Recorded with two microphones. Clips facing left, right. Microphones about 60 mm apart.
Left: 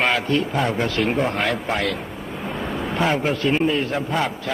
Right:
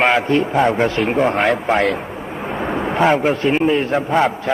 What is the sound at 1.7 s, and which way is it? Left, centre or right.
Speech, right.